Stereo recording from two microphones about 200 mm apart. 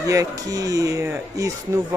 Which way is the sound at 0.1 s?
15° right (ahead or behind).